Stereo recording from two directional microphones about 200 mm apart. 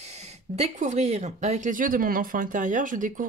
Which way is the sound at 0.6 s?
35° right (ahead or behind).